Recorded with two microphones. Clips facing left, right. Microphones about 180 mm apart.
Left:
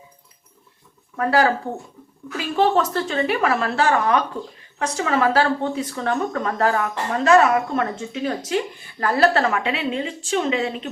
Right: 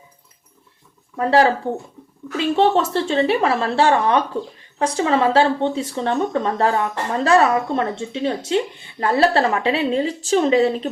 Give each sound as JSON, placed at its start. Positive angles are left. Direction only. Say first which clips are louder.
{"t": 1.1, "sound": "speech", "louder": "right 3 dB", "side_deg": -25}